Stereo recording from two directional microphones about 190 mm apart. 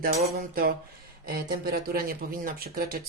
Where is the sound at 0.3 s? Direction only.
50° right (ahead or behind).